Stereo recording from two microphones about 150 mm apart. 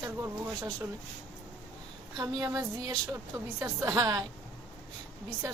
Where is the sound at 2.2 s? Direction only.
25° right (ahead or behind).